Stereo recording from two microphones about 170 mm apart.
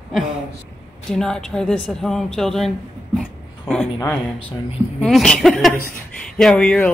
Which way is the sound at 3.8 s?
10° left (ahead or behind).